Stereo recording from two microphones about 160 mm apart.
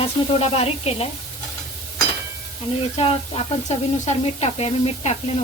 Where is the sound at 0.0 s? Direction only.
40° left (ahead or behind).